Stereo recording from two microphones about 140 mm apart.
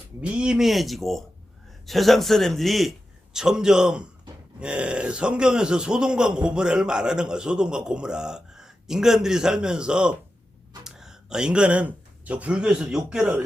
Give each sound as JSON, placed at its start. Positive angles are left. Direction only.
{"t": 0.2, "sound": "a man's voice", "side_deg": -5}